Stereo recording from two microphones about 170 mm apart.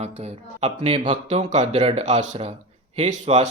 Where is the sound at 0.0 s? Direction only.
35° right (ahead or behind).